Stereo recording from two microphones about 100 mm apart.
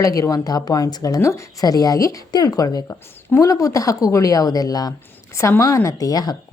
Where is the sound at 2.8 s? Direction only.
30° left (ahead or behind).